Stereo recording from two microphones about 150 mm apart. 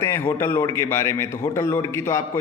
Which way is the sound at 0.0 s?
15° left (ahead or behind).